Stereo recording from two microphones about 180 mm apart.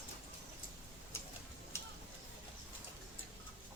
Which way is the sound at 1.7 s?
15° left (ahead or behind).